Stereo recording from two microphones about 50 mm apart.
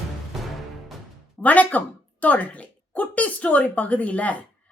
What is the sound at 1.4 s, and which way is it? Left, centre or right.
A woman's voice, left.